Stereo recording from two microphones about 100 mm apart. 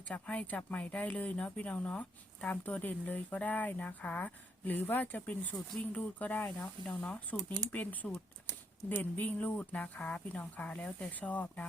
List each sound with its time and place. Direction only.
0.1 s speech: 15° left (ahead or behind)